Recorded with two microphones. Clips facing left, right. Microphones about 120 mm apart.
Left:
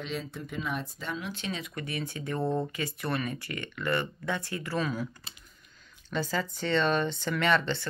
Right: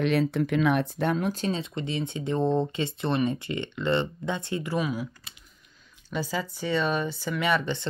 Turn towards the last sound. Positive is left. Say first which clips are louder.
# right 1 dB
turn(degrees=-15)  # may be behind; listen again after turning